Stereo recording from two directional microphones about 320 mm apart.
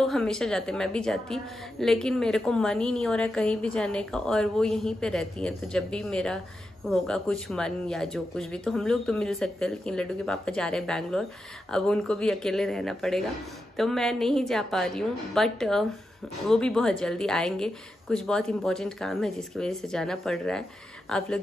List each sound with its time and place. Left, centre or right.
0.0 s a woman's voice: centre